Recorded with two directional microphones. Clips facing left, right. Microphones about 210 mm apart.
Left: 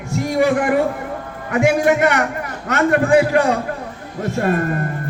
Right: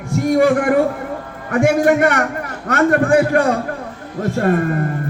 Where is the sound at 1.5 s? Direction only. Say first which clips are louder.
Right 2 dB; 50° right (ahead or behind).